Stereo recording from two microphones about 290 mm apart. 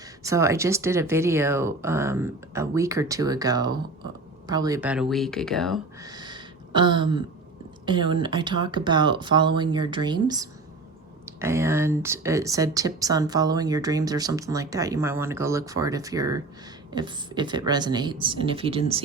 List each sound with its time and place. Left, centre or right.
0.2 s speech: centre
6.0 s a sound: centre
7.9 s speech: centre